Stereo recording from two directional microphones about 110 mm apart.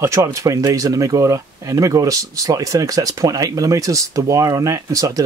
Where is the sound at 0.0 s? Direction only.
25° right (ahead or behind).